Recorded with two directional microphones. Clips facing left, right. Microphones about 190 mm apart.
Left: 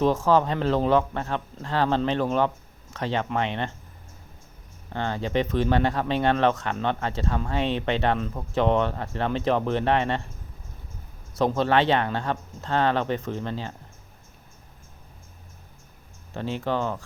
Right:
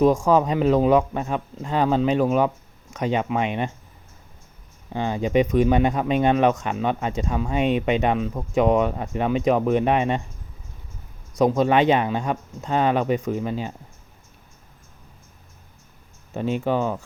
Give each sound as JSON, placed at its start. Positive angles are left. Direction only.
{"t": 0.3, "sound": "speech", "side_deg": -10}
{"t": 4.9, "sound": "speech", "side_deg": -15}
{"t": 11.3, "sound": "speech", "side_deg": -15}
{"t": 16.3, "sound": "speech", "side_deg": -15}